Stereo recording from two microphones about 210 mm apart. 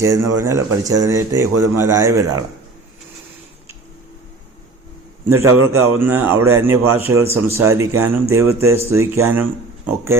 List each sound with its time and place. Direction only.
0.0 s speech: 15° right (ahead or behind)
5.3 s speech: 10° right (ahead or behind)